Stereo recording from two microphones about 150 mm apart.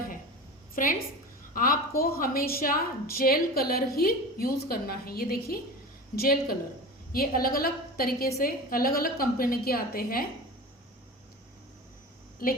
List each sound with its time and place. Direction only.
0.8 s a woman's voice: 65° left (ahead or behind); by 10.2 s 80° left
12.4 s a woman's voice: 70° left (ahead or behind)